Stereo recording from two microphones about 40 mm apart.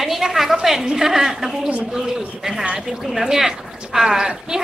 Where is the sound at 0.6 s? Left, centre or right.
Centre.